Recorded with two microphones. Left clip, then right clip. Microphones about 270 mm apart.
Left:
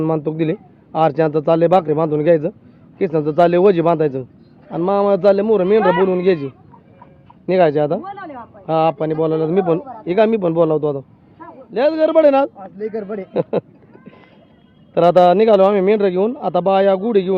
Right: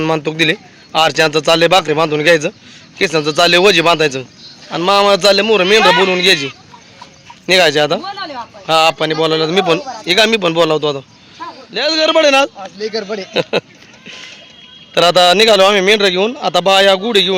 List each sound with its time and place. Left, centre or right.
0.0 s speech: centre
7.7 s speech: centre
8.0 s a sound: right
8.6 s speech: centre
9.8 s speech: right
10.1 s speech: centre
14.9 s speech: centre